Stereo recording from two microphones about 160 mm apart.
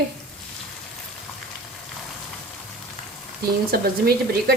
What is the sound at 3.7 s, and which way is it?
Speech, 80° right.